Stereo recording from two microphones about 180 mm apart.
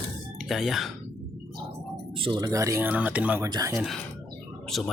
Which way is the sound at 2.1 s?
25° right (ahead or behind).